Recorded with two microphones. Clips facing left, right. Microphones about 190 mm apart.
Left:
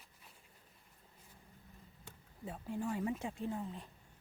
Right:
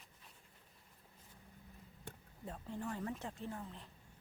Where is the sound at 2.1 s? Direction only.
55° right (ahead or behind).